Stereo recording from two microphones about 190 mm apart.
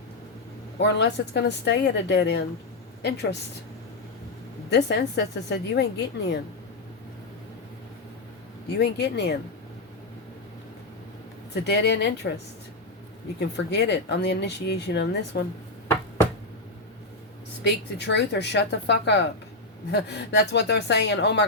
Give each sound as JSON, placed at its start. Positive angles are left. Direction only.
{"t": 0.8, "sound": "speech", "side_deg": 65}
{"t": 4.7, "sound": "speech", "side_deg": 65}
{"t": 8.8, "sound": "speech", "side_deg": 60}
{"t": 11.5, "sound": "speech", "side_deg": 60}
{"t": 13.7, "sound": "speech", "side_deg": 65}
{"t": 17.6, "sound": "speech", "side_deg": 65}